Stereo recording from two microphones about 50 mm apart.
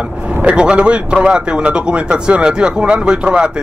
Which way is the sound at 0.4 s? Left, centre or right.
Right.